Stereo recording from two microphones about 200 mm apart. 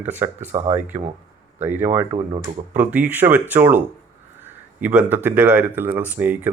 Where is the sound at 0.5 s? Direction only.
25° right (ahead or behind).